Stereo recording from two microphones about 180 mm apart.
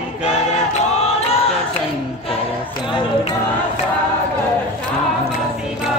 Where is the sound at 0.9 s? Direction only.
40° left (ahead or behind).